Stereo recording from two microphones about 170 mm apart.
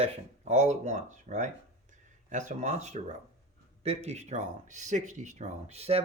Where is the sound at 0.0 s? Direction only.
40° right (ahead or behind).